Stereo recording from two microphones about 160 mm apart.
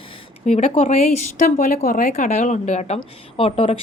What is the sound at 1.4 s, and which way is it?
Speech, 60° left (ahead or behind).